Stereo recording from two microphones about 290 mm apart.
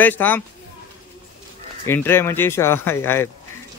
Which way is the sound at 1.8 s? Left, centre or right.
Centre.